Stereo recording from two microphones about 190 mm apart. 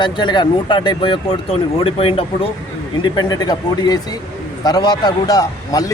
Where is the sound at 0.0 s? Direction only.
25° left (ahead or behind).